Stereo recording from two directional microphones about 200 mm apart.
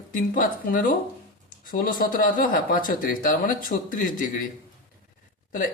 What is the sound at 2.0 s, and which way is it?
Speech, 40° left (ahead or behind).